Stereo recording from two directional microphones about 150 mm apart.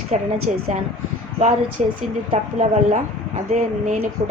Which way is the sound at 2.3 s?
55° right (ahead or behind).